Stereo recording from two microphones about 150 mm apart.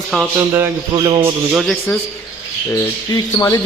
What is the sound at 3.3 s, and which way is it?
Speech, 25° left (ahead or behind).